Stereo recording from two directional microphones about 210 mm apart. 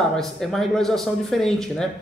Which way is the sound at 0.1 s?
Centre (ahead or behind).